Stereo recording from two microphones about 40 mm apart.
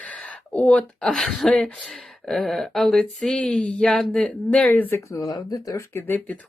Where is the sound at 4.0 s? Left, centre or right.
Centre.